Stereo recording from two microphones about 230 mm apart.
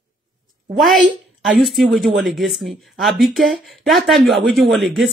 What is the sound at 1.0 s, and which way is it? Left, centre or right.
Speech, right.